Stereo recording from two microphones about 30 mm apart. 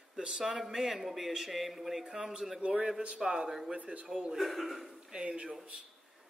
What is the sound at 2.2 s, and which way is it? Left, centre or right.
Speech, right.